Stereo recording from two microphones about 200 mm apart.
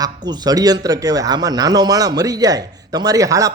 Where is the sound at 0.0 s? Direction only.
20° right (ahead or behind).